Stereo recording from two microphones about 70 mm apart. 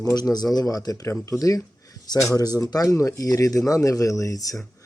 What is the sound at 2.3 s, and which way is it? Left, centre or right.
Speech, left.